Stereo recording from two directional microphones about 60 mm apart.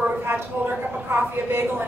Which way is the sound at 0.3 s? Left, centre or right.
Right.